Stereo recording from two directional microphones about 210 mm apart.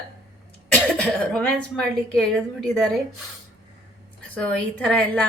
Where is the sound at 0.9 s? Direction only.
5° left (ahead or behind).